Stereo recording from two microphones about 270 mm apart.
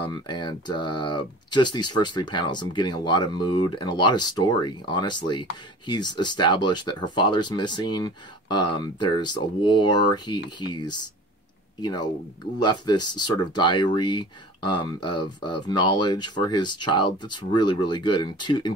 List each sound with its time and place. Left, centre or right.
0.0 s speech: centre